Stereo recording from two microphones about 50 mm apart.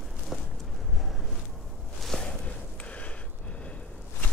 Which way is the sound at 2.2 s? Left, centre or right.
Left.